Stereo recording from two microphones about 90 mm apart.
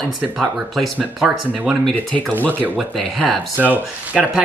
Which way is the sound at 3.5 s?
20° right (ahead or behind).